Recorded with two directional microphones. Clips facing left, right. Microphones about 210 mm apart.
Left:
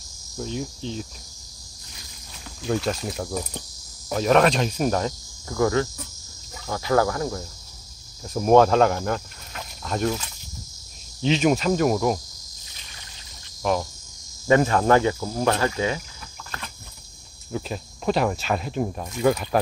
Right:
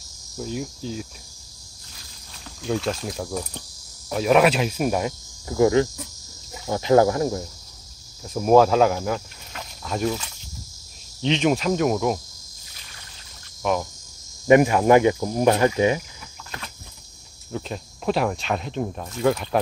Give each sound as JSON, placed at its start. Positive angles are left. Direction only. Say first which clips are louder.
{"t": 0.4, "sound": "speech", "louder": "even", "side_deg": -5}
{"t": 2.6, "sound": "speech", "louder": "even", "side_deg": 0}
{"t": 5.5, "sound": "speech", "louder": "right 4 dB", "side_deg": -20}
{"t": 8.3, "sound": "speech", "louder": "even", "side_deg": 0}
{"t": 11.2, "sound": "speech", "louder": "left 1 dB", "side_deg": 5}
{"t": 13.6, "sound": "cricket", "louder": "even", "side_deg": 0}
{"t": 14.5, "sound": "speech", "louder": "right 3 dB", "side_deg": -15}
{"t": 17.5, "sound": "speech", "louder": "left 1 dB", "side_deg": 5}